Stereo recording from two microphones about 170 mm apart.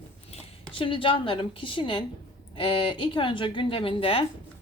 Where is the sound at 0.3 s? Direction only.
30° left (ahead or behind).